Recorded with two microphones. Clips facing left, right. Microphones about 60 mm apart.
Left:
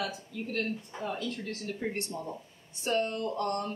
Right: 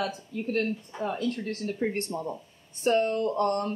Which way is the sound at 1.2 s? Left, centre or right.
Right.